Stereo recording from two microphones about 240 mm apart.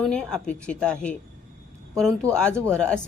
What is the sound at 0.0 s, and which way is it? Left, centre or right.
A woman's voice, centre.